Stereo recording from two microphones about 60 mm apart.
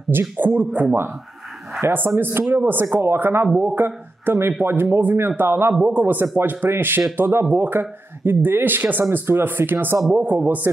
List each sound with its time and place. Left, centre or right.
0.1 s speech: right
2.0 s speech: right
5.8 s speech: right